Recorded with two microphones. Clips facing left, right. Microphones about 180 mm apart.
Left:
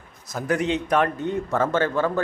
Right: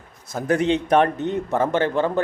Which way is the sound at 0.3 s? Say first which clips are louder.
Right 3 dB; 30° right (ahead or behind).